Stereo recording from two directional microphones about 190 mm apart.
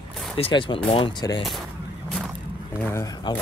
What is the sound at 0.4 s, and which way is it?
Speech, 25° left (ahead or behind).